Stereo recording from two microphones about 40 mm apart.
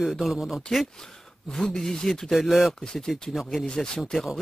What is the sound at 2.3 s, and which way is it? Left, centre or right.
Speech, centre.